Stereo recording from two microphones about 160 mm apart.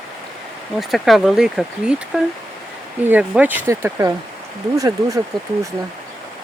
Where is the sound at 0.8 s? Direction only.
Centre (ahead or behind).